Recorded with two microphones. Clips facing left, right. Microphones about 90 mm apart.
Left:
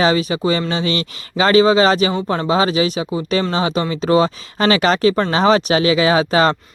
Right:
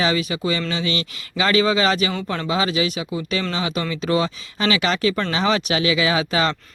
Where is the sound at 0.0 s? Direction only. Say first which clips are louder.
Left 5 dB; 35° left (ahead or behind).